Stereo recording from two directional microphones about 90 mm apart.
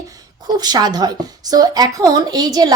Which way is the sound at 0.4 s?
50° right (ahead or behind).